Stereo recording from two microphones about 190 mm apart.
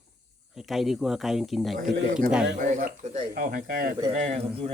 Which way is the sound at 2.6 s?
40° right (ahead or behind).